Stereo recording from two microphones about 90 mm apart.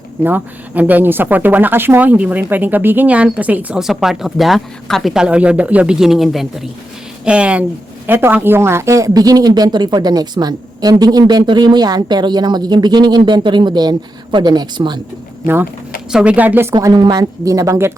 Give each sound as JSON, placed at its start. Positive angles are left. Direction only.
{"t": 0.2, "sound": "speech", "side_deg": -20}
{"t": 3.8, "sound": "speech", "side_deg": -5}
{"t": 5.1, "sound": "a man's voice", "side_deg": -10}
{"t": 16.1, "sound": "speech", "side_deg": -15}
{"t": 16.7, "sound": "a man's voice", "side_deg": -50}